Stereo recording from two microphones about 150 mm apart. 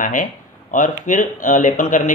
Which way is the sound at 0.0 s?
60° left (ahead or behind).